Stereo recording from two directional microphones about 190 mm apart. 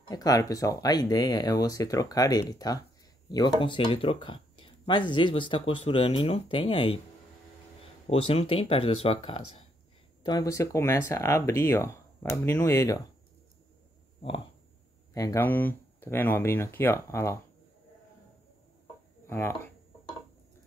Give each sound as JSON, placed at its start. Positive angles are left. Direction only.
{"t": 0.1, "sound": "speech", "side_deg": 20}
{"t": 8.1, "sound": "speech", "side_deg": 30}
{"t": 10.2, "sound": "speech", "side_deg": 20}
{"t": 15.1, "sound": "speech", "side_deg": 15}
{"t": 19.2, "sound": "speech", "side_deg": 15}